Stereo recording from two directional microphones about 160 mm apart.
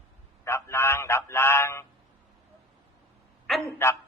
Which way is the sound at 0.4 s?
15° left (ahead or behind).